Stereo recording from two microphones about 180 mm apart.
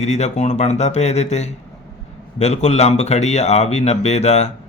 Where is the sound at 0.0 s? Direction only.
40° left (ahead or behind).